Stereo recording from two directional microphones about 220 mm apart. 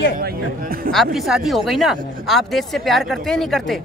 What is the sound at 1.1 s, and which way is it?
Speech, centre (ahead or behind).